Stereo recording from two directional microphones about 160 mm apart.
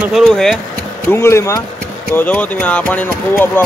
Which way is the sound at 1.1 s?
15° left (ahead or behind).